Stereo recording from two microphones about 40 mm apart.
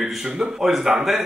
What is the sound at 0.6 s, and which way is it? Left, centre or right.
Speech, centre.